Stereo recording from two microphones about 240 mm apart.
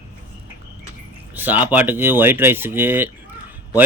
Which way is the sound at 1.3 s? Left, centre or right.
Centre.